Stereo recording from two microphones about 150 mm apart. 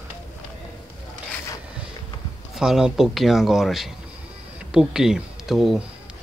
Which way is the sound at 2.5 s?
5° right (ahead or behind).